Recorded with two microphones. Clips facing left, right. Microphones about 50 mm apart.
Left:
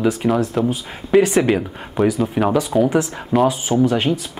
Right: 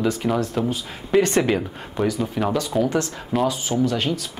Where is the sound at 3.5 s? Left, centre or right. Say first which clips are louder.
Left 5 dB; left.